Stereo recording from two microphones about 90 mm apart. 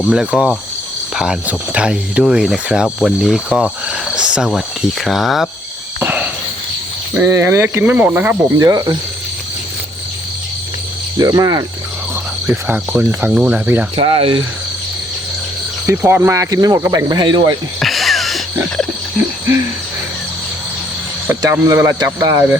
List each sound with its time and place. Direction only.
0.1 s speech: 10° right (ahead or behind)
6.0 s cricket: 20° right (ahead or behind)
7.3 s speech: 30° right (ahead or behind)
8.5 s speech: 45° right (ahead or behind)
11.2 s speech: 45° right (ahead or behind)
12.5 s speech: 20° right (ahead or behind)
14.0 s speech: 90° right
16.0 s speech: 20° right (ahead or behind)
16.3 s speech: 40° right (ahead or behind)
16.8 s a man's voice: 30° right (ahead or behind)
17.1 s speech: 55° right (ahead or behind)
17.7 s music: centre (ahead or behind)
21.5 s a man's voice: 30° right (ahead or behind)
21.9 s speech: 45° right (ahead or behind)